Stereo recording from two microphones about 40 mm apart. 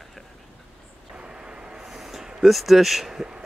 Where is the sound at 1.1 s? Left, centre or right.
Right.